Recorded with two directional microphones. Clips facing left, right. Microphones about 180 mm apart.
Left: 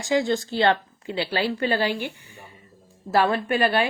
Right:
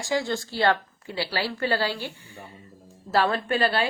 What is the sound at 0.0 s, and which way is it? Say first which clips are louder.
Speech: left 4 dB; 20° left (ahead or behind).